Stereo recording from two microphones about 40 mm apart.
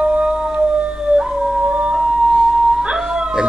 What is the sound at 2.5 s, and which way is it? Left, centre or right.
Howl, centre.